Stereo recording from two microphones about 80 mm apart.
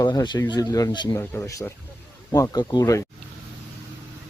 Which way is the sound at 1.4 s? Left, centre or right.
Left.